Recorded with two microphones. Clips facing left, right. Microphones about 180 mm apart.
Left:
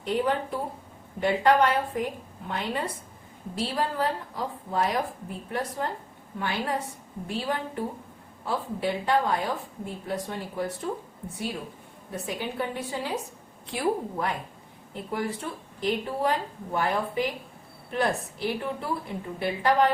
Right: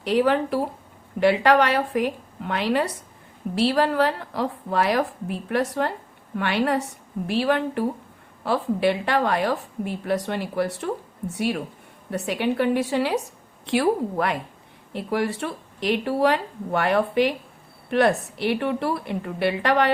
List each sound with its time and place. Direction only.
0.0 s a woman's voice: 75° right (ahead or behind)